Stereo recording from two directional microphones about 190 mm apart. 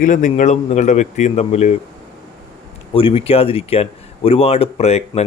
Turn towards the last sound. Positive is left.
turn(degrees=35)  # may be behind; listen again after turning